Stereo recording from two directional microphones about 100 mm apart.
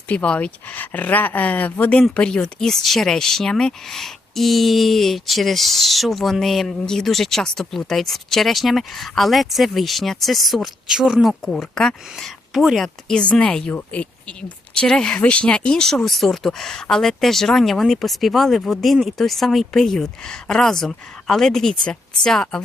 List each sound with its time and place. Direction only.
0.1 s speech: 15° left (ahead or behind)